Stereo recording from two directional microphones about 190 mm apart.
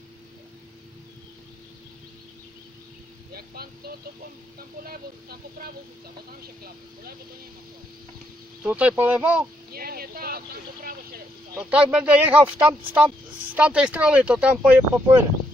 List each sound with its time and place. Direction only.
3.3 s speech: 55° right (ahead or behind)
8.6 s speech: 5° right (ahead or behind)
9.7 s vehicle: 50° right (ahead or behind)
11.6 s speech: 5° right (ahead or behind)